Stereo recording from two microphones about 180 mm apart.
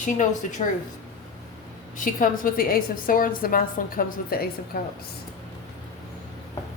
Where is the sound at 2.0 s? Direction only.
50° left (ahead or behind).